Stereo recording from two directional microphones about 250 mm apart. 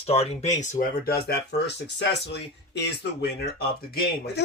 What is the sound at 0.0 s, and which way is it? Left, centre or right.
Speech, left.